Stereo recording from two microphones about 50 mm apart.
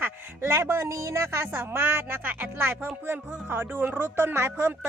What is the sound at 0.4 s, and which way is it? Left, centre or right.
Speech, right.